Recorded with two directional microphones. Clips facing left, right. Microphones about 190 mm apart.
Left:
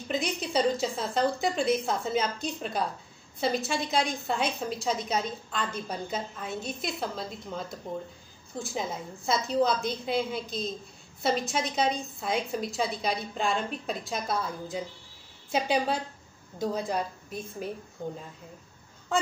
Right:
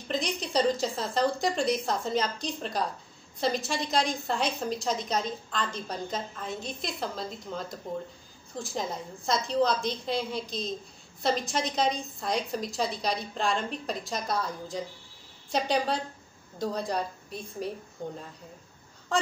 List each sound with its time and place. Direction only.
0.1 s a woman's voice: 5° left (ahead or behind)